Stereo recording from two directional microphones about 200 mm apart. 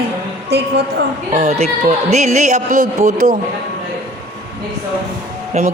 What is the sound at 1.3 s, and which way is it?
Speech, 35° right (ahead or behind).